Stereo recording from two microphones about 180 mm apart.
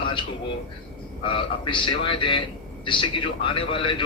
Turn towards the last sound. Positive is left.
turn(degrees=30)  # may be behind; listen again after turning